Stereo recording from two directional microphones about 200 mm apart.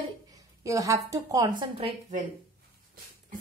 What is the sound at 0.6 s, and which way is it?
Speech, 15° right (ahead or behind).